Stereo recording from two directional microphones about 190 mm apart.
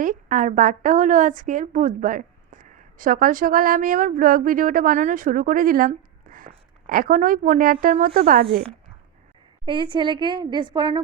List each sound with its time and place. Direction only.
0.0 s a woman's voice: 45° right (ahead or behind)
9.6 s a woman's voice: 25° right (ahead or behind)